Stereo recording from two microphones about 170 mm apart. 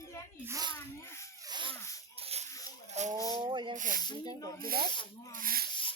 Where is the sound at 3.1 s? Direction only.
20° left (ahead or behind).